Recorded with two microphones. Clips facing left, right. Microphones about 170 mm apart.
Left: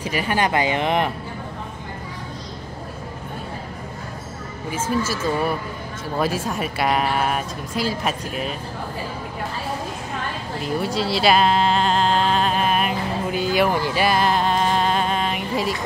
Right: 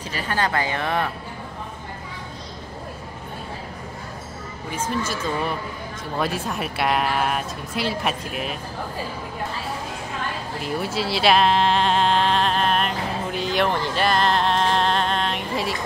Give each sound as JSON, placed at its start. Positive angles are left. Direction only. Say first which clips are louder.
{"t": 0.0, "sound": "speech", "louder": "left 3 dB", "side_deg": 15}
{"t": 4.7, "sound": "a woman's voice", "louder": "left 3 dB", "side_deg": 5}
{"t": 10.6, "sound": "a sound", "louder": "left 3 dB", "side_deg": 0}